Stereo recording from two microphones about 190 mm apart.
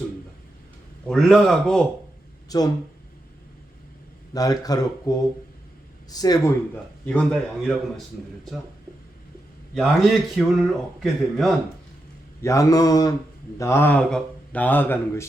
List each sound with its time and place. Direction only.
1.0 s speech: centre (ahead or behind)
2.5 s speech: 20° left (ahead or behind)
4.4 s speech: 20° left (ahead or behind)
7.0 s speech: 5° left (ahead or behind)
9.7 s speech: centre (ahead or behind)
12.4 s speech: 15° left (ahead or behind)